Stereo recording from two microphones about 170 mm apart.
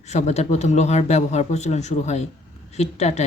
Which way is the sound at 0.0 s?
40° left (ahead or behind).